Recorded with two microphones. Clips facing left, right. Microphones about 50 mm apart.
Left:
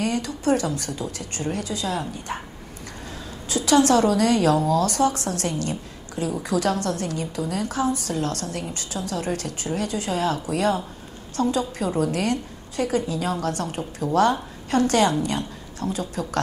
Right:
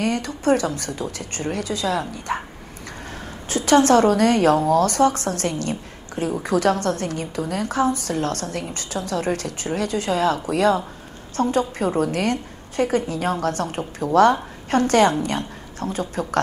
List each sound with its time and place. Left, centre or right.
0.0 s a woman's voice: right
3.4 s a woman's voice: right